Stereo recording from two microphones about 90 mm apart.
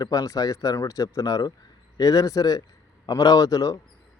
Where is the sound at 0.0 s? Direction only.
40° left (ahead or behind).